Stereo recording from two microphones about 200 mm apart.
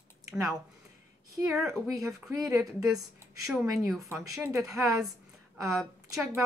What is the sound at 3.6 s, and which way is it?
Speech, 15° right (ahead or behind).